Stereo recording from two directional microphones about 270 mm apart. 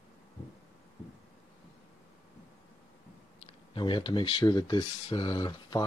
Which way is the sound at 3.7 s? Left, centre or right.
Centre.